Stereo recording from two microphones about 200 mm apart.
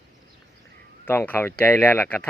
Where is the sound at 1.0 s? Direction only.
10° left (ahead or behind).